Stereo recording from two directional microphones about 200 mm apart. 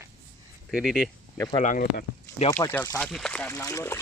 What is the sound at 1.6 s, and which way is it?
Speech, 45° left (ahead or behind).